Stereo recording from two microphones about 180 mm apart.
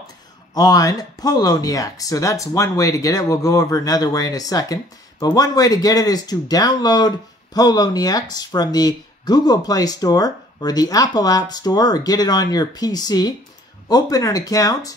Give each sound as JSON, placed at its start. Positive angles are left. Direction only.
{"t": 0.6, "sound": "speech", "side_deg": 20}